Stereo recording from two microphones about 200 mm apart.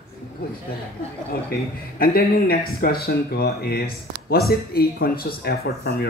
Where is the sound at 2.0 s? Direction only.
50° left (ahead or behind).